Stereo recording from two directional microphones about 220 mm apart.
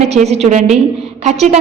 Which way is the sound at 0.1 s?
30° right (ahead or behind).